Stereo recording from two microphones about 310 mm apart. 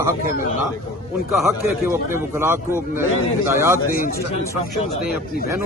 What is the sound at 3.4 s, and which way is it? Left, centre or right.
Speech, centre.